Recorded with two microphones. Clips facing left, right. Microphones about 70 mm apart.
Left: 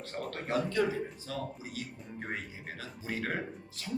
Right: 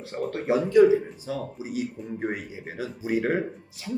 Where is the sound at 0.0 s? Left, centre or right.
Centre.